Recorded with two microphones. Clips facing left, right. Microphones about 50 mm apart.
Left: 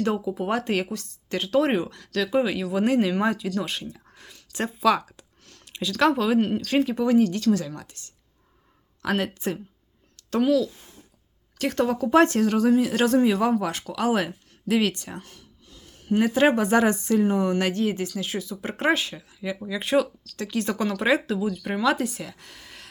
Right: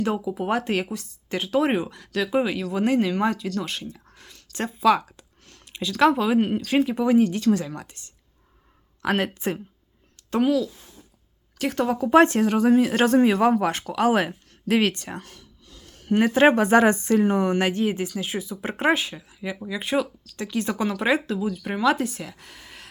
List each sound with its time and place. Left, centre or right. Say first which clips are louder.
0.0 s speech: even; centre; by 8.1 s right
9.1 s speech: even; right
10.2 s speech: even; centre
11.9 s speech: right 3 dB; right
12.7 s speech: right 2 dB; right
15.2 s speech: right 1 dB; right; by 22.9 s centre